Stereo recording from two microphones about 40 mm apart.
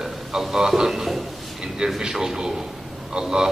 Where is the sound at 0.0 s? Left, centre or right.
Centre.